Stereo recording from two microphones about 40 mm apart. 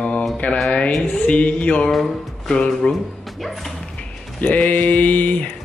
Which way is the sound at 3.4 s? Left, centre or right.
Centre.